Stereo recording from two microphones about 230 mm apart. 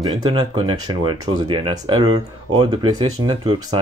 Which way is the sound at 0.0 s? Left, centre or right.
Centre.